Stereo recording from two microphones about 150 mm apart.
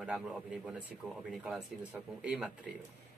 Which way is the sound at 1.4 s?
10° right (ahead or behind).